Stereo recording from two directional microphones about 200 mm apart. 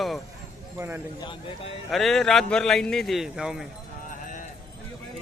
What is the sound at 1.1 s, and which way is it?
Speech, 25° left (ahead or behind).